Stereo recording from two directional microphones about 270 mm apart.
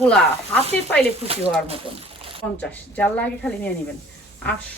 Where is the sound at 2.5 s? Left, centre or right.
Centre.